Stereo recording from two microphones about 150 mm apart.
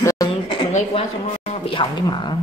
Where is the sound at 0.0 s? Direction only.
25° left (ahead or behind).